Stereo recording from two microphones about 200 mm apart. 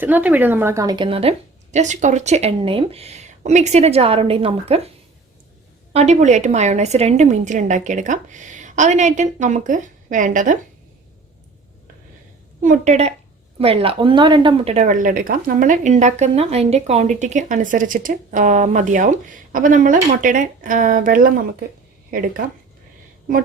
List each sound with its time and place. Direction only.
0.0 s a woman's voice: 10° right (ahead or behind); by 4.9 s 30° right (ahead or behind)
5.9 s a woman's voice: 35° right (ahead or behind)
12.6 s a woman's voice: 40° right (ahead or behind)